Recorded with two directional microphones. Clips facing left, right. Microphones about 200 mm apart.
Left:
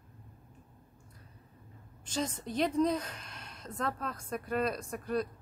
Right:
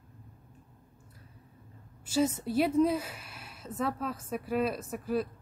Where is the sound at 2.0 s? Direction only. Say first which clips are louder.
Right 7 dB; 10° right (ahead or behind).